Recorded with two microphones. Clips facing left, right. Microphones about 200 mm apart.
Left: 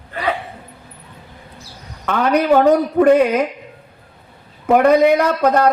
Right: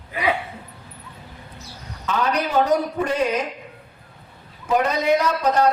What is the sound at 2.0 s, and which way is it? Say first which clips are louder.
A man's voice: left 6 dB; 60° left (ahead or behind).